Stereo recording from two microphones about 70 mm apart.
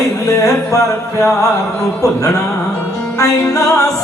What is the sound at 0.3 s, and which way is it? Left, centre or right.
Speech, left.